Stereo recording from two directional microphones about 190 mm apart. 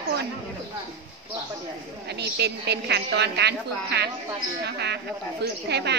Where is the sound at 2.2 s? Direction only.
60° right (ahead or behind).